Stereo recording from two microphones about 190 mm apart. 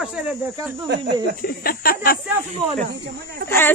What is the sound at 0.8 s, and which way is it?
Speech, 65° right (ahead or behind).